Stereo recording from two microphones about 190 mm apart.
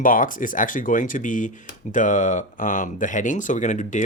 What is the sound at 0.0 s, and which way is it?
Speech, 45° left (ahead or behind).